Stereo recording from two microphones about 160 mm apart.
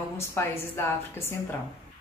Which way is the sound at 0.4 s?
15° left (ahead or behind).